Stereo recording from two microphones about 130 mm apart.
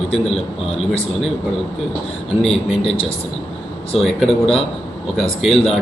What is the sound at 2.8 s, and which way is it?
Speech, 45° left (ahead or behind).